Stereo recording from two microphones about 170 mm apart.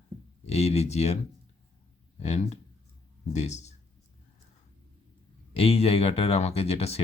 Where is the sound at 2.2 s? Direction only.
40° left (ahead or behind).